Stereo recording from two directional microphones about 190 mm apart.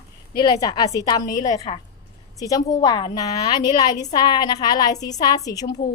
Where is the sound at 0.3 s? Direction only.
20° left (ahead or behind).